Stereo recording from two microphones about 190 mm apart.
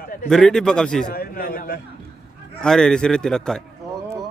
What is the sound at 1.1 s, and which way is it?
Speech, 50° left (ahead or behind).